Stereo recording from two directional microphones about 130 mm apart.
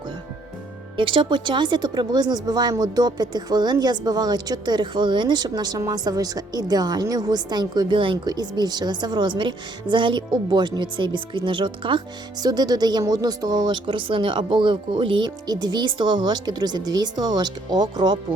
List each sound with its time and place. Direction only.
0.9 s speech: 40° right (ahead or behind)